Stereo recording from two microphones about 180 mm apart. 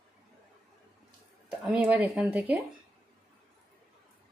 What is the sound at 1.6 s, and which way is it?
A woman's voice, 5° right (ahead or behind).